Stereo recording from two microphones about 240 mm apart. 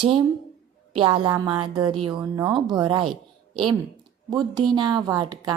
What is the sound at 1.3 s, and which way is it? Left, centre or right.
A woman's voice, centre.